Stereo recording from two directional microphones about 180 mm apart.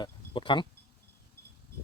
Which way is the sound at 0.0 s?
25° left (ahead or behind).